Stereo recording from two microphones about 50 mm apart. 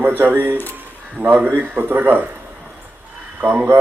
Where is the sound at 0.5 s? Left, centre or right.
Left.